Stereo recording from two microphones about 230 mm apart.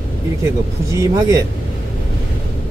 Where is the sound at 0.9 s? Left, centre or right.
Centre.